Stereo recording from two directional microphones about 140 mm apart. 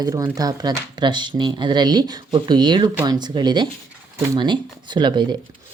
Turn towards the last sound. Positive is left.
turn(degrees=-35)  # may be behind; listen again after turning